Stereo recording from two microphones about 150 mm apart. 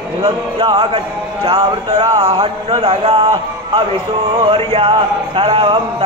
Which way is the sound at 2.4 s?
40° right (ahead or behind).